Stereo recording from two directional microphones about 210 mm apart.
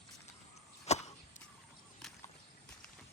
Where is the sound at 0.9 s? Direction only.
30° left (ahead or behind).